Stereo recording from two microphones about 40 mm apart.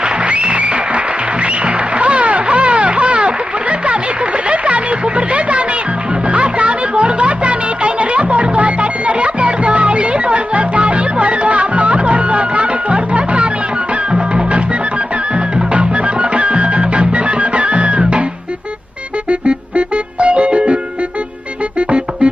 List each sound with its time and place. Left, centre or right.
0.0 s music: right
19.3 s music: right
21.8 s music: right